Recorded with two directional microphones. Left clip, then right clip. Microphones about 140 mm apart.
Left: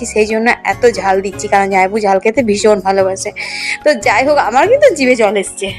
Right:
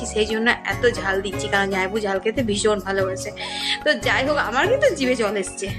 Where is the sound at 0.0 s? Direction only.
45° left (ahead or behind).